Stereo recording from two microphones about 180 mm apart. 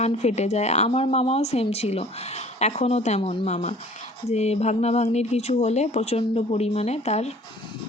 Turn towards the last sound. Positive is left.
turn(degrees=35)  # may be behind; listen again after turning